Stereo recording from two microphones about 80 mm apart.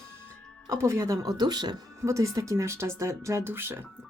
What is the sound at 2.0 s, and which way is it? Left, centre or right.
Speech, right.